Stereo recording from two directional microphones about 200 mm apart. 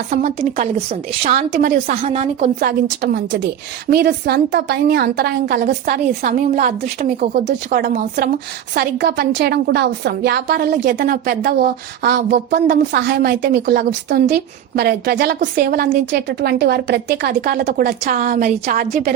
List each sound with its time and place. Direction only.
0.1 s a woman's voice: 40° right (ahead or behind)
2.0 s a woman's voice: 30° right (ahead or behind)
2.6 s a woman's voice: 50° right (ahead or behind)